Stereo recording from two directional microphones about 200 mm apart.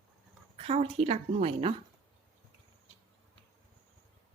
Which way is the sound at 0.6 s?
30° right (ahead or behind).